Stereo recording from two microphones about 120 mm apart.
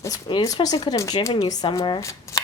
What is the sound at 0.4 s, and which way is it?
Speech, 30° left (ahead or behind).